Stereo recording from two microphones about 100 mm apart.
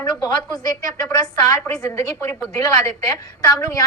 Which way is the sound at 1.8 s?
25° left (ahead or behind).